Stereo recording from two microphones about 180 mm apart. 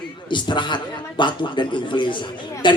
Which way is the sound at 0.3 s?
25° left (ahead or behind).